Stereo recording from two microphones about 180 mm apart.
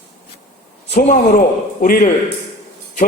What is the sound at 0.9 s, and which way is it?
A man's voice, 50° left (ahead or behind).